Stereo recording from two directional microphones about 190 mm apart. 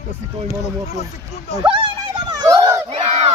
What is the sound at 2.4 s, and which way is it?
Crowd, 20° right (ahead or behind).